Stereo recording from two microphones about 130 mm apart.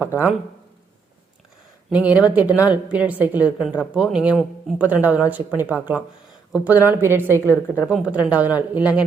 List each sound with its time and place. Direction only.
0.0 s a woman's voice: 15° right (ahead or behind)
1.9 s a woman's voice: 10° right (ahead or behind)